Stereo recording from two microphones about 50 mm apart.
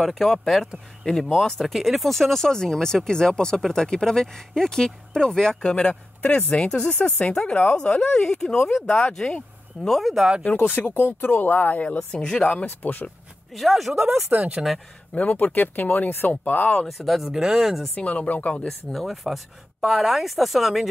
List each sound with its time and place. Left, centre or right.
0.0 s speech: centre
9.8 s speech: centre
10.4 s speech: left
12.1 s speech: centre
12.6 s speech: left
13.5 s speech: centre
14.3 s speech: right
15.1 s speech: left
16.3 s speech: left
16.8 s speech: centre
17.9 s speech: left
18.9 s speech: centre